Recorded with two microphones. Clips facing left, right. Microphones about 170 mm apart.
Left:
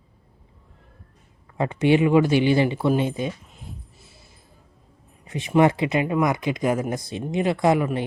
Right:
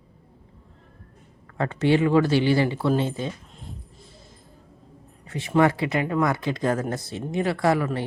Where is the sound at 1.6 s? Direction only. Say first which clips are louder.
Left 2 dB; 15° left (ahead or behind).